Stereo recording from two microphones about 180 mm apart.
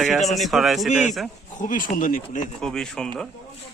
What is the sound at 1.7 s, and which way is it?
Speech, 50° left (ahead or behind).